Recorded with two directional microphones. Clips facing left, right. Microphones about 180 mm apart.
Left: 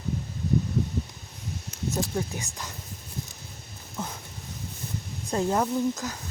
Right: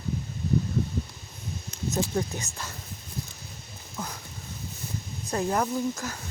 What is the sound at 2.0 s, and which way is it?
Speech, 10° left (ahead or behind).